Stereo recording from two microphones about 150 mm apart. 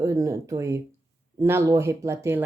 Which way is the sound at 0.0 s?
20° right (ahead or behind).